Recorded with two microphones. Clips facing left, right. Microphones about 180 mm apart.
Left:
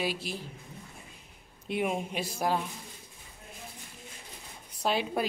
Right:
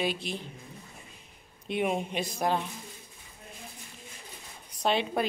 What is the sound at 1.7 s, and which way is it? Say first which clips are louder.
Speech: right 2 dB; 5° left (ahead or behind).